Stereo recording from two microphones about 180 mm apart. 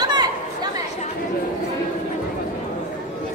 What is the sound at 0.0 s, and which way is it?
Chatter, 25° right (ahead or behind).